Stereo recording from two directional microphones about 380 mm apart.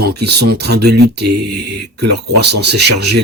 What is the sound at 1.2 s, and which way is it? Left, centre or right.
Speech, right.